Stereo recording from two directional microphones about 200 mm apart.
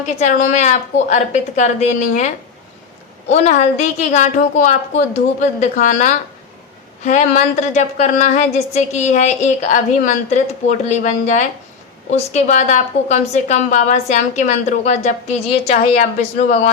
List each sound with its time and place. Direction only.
0.2 s a woman's voice: 35° left (ahead or behind)
3.3 s a woman's voice: 35° left (ahead or behind)